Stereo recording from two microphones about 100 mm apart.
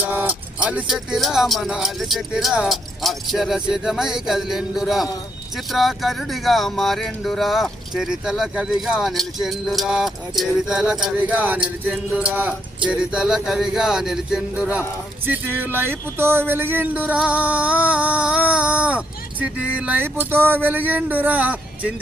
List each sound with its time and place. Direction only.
0.0 s music: 20° right (ahead or behind)
0.9 s speech: 5° right (ahead or behind)
11.2 s speech: 15° right (ahead or behind)
15.3 s speech: 20° right (ahead or behind)